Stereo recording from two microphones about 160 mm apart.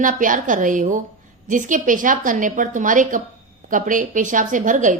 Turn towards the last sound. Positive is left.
turn(degrees=-50)  # may be behind; listen again after turning